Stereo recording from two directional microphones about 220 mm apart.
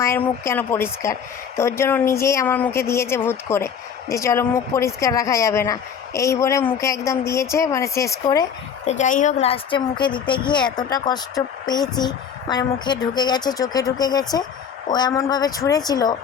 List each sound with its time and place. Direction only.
0.0 s speech: 10° left (ahead or behind)
8.9 s speech: 35° left (ahead or behind); by 16.1 s 15° left (ahead or behind)